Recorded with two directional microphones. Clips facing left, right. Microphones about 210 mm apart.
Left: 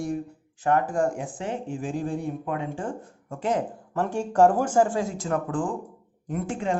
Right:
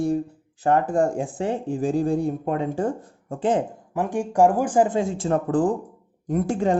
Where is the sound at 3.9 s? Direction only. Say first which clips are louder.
Right 1 dB; 15° right (ahead or behind); by 6.8 s 40° right (ahead or behind).